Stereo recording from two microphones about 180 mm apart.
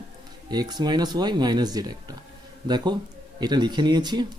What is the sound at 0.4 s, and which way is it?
Speech, 20° right (ahead or behind).